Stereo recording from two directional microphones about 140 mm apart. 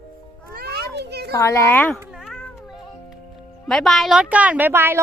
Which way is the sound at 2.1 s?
Centre (ahead or behind).